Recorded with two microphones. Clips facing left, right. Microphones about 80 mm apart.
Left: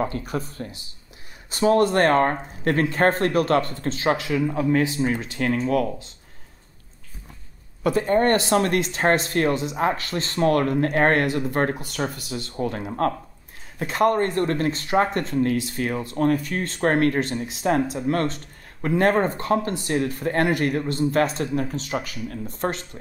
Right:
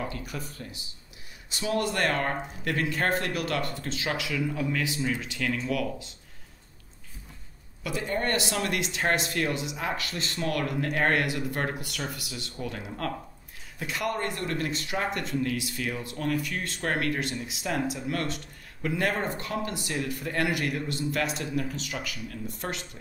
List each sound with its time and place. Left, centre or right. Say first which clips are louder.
0.0 s speech: left 9 dB; left
7.8 s speech: left 10 dB; left